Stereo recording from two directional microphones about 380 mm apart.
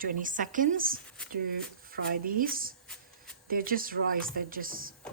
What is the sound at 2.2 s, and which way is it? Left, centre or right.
Speech, right.